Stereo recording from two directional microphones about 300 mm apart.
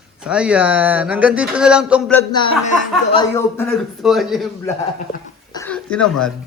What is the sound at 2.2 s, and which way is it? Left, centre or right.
Speech, centre.